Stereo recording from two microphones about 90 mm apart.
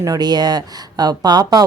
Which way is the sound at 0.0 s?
45° right (ahead or behind).